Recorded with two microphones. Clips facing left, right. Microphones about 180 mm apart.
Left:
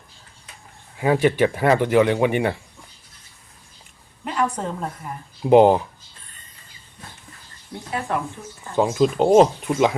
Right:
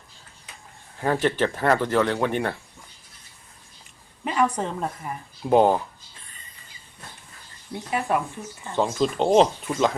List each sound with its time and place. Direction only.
0.9 s speech: 10° left (ahead or behind)
4.2 s a woman's voice: 5° right (ahead or behind)
5.4 s speech: 20° left (ahead or behind)
8.7 s speech: 10° left (ahead or behind)